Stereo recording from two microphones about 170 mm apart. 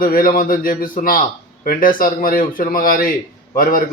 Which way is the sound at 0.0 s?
55° left (ahead or behind).